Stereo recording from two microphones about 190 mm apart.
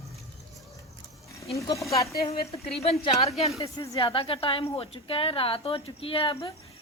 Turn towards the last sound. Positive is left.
turn(degrees=25)  # may be behind; listen again after turning